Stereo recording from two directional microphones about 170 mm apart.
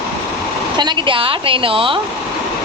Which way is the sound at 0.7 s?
25° right (ahead or behind).